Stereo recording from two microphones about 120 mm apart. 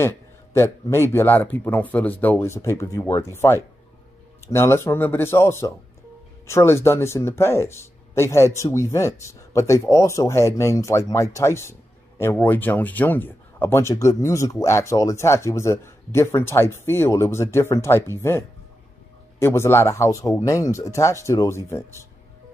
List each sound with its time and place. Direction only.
0.0 s speech: 20° left (ahead or behind)
19.4 s speech: 20° left (ahead or behind)